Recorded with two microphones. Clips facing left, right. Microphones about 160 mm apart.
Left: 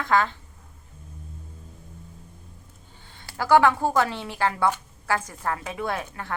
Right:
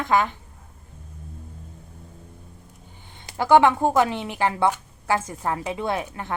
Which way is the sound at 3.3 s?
20° right (ahead or behind).